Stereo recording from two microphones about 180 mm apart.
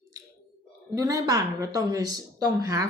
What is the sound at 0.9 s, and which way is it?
A woman's voice, 20° right (ahead or behind).